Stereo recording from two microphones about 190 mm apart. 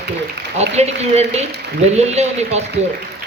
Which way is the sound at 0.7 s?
35° right (ahead or behind).